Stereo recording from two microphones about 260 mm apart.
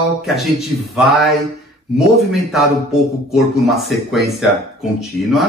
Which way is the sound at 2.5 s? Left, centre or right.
Centre.